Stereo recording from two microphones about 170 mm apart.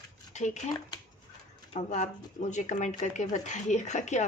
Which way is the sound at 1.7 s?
40° left (ahead or behind).